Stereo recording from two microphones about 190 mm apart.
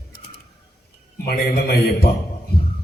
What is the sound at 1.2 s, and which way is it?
Speech, 55° left (ahead or behind).